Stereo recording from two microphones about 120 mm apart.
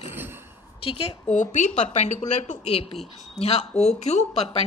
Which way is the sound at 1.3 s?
85° left.